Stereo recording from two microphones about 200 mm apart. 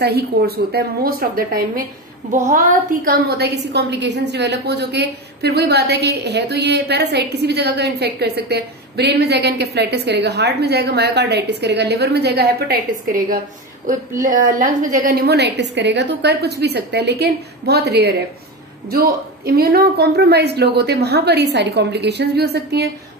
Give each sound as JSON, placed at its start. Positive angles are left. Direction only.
{"t": 0.0, "sound": "a woman's voice", "side_deg": -55}